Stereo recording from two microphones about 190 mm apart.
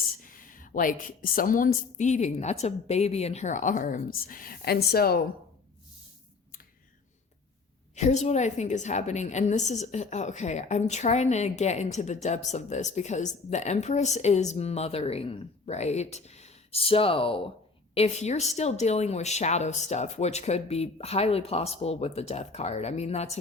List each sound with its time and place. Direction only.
0.2 s a woman's voice: 45° left (ahead or behind)
7.9 s a woman's voice: 40° left (ahead or behind)